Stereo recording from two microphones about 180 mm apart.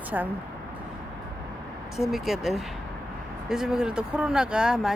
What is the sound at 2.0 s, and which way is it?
Speech, centre (ahead or behind).